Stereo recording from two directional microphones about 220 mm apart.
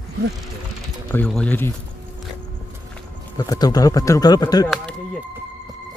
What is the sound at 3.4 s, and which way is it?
Speech, 15° left (ahead or behind).